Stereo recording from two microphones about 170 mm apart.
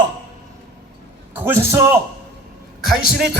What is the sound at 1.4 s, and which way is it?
Speech, 15° right (ahead or behind).